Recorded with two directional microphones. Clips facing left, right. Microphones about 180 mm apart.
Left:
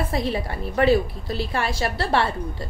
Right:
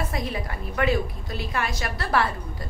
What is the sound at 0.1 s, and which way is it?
A woman's voice, 30° left (ahead or behind).